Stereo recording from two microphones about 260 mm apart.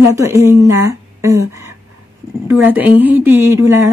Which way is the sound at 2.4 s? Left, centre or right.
Centre.